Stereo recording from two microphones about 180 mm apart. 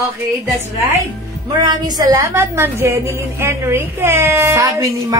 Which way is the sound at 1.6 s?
20° right (ahead or behind).